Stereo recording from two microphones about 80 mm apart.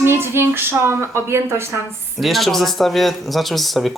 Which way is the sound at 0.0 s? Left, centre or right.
Right.